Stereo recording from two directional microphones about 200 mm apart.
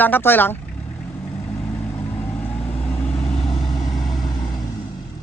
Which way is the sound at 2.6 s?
30° left (ahead or behind).